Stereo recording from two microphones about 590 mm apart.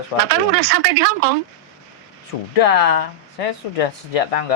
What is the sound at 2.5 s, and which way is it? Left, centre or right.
Speech, left.